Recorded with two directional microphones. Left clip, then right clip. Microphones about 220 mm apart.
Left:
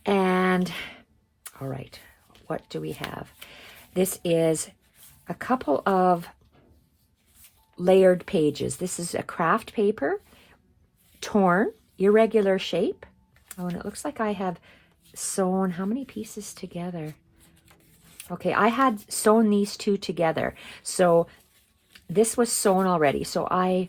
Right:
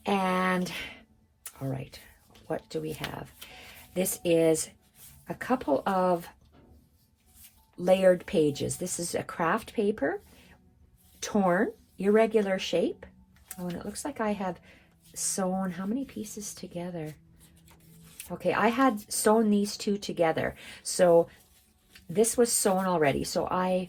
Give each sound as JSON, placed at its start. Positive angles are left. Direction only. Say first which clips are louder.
{"t": 0.0, "sound": "a sound", "louder": "left 4 dB", "side_deg": 45}
{"t": 2.6, "sound": "speech", "louder": "left 1 dB", "side_deg": 45}
{"t": 3.9, "sound": "speech", "louder": "left 2 dB", "side_deg": 45}
{"t": 7.8, "sound": "speech", "louder": "left 4 dB", "side_deg": 45}
{"t": 11.2, "sound": "speech", "louder": "left 4 dB", "side_deg": 45}
{"t": 18.3, "sound": "speech", "louder": "left 4 dB", "side_deg": 45}